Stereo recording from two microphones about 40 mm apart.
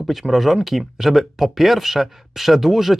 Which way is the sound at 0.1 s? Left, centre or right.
Centre.